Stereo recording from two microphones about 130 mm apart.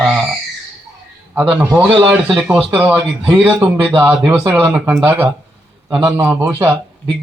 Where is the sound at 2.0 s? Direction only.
5° right (ahead or behind).